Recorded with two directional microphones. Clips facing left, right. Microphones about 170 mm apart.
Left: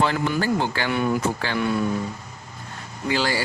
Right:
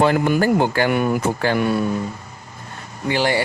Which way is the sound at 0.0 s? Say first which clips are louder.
Right 6 dB; 50° right (ahead or behind).